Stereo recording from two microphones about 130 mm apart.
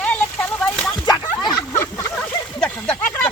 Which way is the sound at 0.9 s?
30° left (ahead or behind).